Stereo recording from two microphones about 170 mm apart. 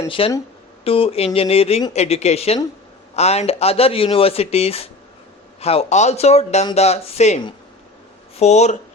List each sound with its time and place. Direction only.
0.1 s speech: 30° left (ahead or behind)